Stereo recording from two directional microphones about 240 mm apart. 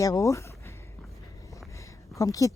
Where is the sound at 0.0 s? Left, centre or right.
Centre.